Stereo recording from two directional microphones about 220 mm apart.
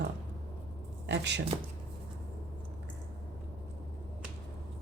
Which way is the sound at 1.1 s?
50° right (ahead or behind).